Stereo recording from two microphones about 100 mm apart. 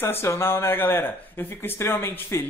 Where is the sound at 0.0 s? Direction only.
25° left (ahead or behind).